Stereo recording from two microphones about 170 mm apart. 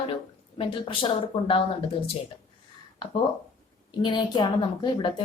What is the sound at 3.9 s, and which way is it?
A woman's voice, 25° left (ahead or behind).